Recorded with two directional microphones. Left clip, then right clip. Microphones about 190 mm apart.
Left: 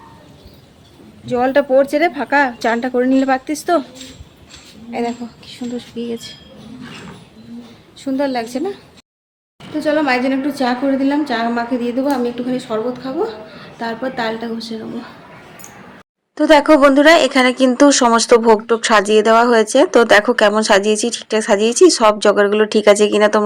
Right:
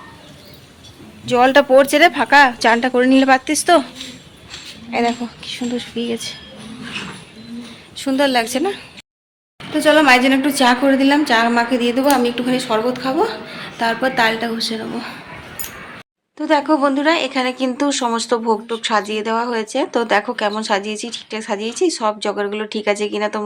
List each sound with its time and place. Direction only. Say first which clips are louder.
1.3 s a woman's voice: right 3 dB; centre (ahead or behind)
4.9 s speech: right 3 dB; 15° right (ahead or behind)
7.9 s a woman's voice: right 3 dB; centre (ahead or behind)
16.4 s speech: left 6 dB; 30° left (ahead or behind)